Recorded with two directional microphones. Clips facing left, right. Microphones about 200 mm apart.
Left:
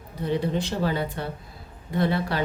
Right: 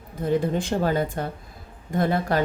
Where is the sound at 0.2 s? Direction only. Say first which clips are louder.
Right 2 dB; 45° right (ahead or behind).